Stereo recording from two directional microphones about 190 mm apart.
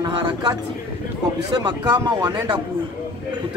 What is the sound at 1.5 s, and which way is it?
Speech, 20° right (ahead or behind).